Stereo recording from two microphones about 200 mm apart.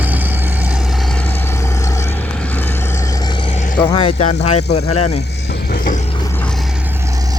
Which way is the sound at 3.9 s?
30° left (ahead or behind).